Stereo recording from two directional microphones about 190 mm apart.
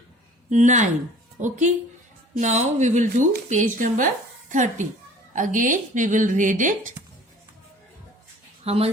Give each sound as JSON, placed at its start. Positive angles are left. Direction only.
{"t": 0.5, "sound": "speech", "side_deg": -40}
{"t": 8.6, "sound": "speech", "side_deg": -30}